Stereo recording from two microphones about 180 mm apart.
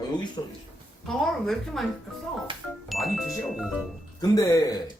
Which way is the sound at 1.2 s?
Centre (ahead or behind).